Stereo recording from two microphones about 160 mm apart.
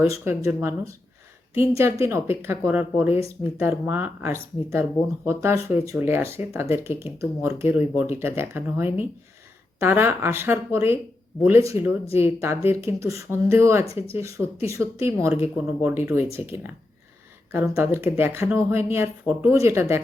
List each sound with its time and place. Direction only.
0.1 s speech: 15° right (ahead or behind)
1.8 s speech: 15° right (ahead or behind)